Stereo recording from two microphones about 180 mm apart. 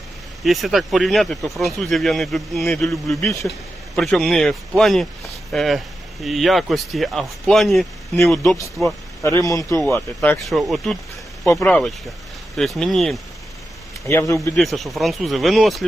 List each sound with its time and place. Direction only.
0.4 s speech: centre (ahead or behind)
9.2 s speech: 15° left (ahead or behind)
9.7 s speech: centre (ahead or behind)
14.1 s speech: 15° left (ahead or behind)
14.5 s speech: centre (ahead or behind)